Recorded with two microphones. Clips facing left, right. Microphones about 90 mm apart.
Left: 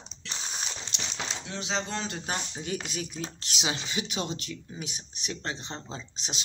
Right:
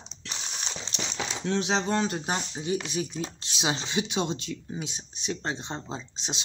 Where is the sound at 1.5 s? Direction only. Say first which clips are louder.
Right 8 dB; 50° right (ahead or behind).